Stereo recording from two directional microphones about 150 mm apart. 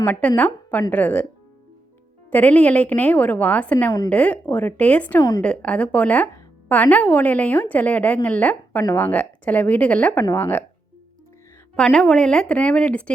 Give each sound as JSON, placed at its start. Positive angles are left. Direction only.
{"t": 0.0, "sound": "a woman's voice", "side_deg": 10}
{"t": 2.3, "sound": "a woman's voice", "side_deg": 10}
{"t": 11.8, "sound": "a woman's voice", "side_deg": 5}